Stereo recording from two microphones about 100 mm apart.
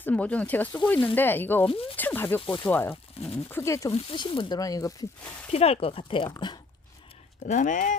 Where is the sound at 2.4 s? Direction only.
55° left (ahead or behind).